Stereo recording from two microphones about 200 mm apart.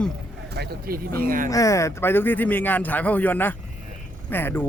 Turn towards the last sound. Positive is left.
turn(degrees=10)  # may be behind; listen again after turning